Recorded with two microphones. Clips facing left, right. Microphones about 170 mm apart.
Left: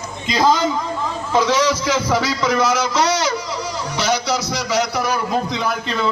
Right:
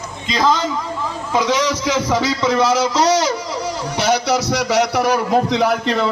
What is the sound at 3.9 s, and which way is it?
A man's voice, 60° right (ahead or behind).